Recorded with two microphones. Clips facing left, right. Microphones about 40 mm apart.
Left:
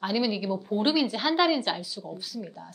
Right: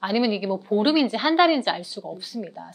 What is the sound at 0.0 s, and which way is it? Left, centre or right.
A woman's voice, centre.